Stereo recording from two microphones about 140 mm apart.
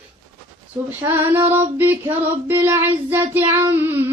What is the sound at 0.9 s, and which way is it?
Female singing, 15° right (ahead or behind).